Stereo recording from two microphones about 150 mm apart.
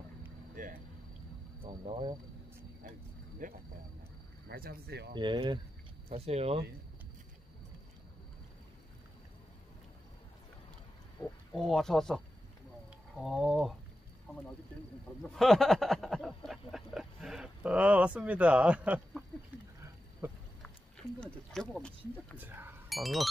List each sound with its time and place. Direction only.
0.6 s a sound: 60° right (ahead or behind)
1.6 s speech: 35° right (ahead or behind)
3.4 s speech: 65° right (ahead or behind)
4.5 s speech: 90° right
5.1 s speech: 30° right (ahead or behind)
6.0 s speech: 45° right (ahead or behind)
11.5 s speech: centre (ahead or behind)
13.2 s speech: centre (ahead or behind)
15.2 s a sound: centre (ahead or behind); by 20.4 s 15° right (ahead or behind)
21.2 s speech: 5° left (ahead or behind)
22.4 s speech: 15° right (ahead or behind)
22.8 s speech: centre (ahead or behind)